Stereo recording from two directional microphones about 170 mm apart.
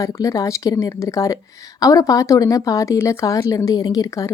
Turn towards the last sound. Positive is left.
turn(degrees=20)  # may be behind; listen again after turning